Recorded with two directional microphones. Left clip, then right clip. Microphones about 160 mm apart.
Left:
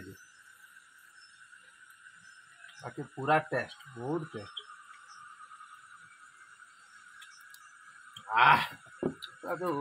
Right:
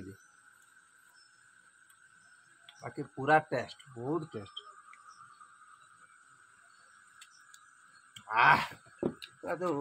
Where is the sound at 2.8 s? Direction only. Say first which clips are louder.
Even; 25° right (ahead or behind).